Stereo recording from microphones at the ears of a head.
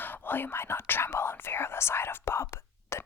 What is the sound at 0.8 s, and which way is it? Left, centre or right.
Whispering, left.